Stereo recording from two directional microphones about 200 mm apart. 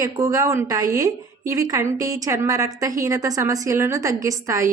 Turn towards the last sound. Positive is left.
turn(degrees=-15)  # may be behind; listen again after turning